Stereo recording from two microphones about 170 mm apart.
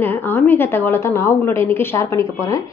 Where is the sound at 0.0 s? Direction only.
10° left (ahead or behind).